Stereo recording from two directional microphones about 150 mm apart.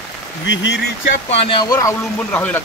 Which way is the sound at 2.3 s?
10° left (ahead or behind).